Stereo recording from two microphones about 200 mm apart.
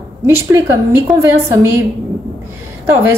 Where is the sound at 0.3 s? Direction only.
10° right (ahead or behind).